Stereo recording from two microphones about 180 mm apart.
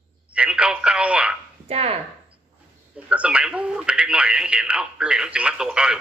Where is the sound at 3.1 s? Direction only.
5° right (ahead or behind).